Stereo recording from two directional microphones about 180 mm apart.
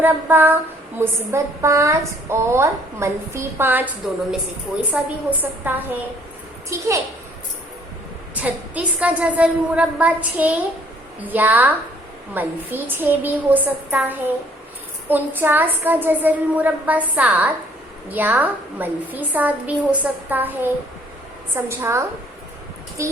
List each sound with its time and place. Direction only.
0.0 s a woman's voice: 10° right (ahead or behind)
8.4 s a woman's voice: 10° right (ahead or behind)